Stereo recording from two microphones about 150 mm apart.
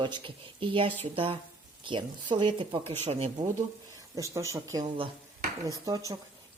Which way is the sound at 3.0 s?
45° right (ahead or behind).